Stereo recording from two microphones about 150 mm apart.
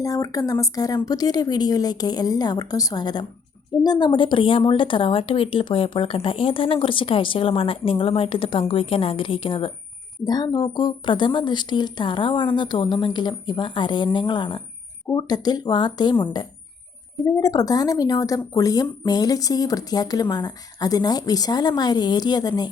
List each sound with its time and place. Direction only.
0.0 s a woman's voice: 25° left (ahead or behind)